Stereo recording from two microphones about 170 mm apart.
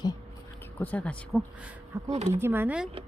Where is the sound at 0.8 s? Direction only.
10° left (ahead or behind).